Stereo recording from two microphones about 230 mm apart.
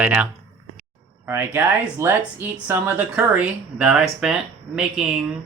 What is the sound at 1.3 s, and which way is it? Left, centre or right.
Speech, centre.